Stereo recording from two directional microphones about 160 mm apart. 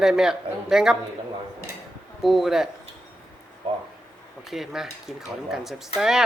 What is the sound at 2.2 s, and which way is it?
Speech, centre (ahead or behind).